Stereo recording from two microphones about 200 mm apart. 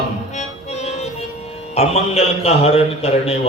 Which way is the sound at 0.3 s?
35° left (ahead or behind).